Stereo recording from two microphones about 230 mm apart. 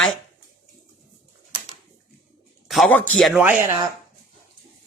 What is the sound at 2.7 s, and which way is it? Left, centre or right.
Speech, centre.